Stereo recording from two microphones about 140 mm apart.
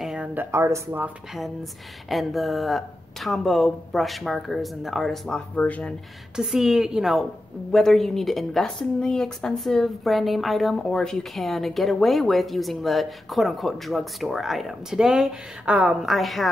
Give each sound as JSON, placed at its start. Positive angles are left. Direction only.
{"t": 0.0, "sound": "speech", "side_deg": -10}
{"t": 2.0, "sound": "speech", "side_deg": 0}
{"t": 6.3, "sound": "speech", "side_deg": -5}